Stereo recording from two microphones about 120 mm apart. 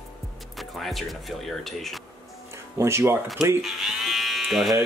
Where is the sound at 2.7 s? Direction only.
25° right (ahead or behind).